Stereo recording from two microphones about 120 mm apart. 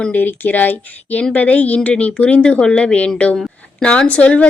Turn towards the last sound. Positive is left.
turn(degrees=10)  # may be behind; listen again after turning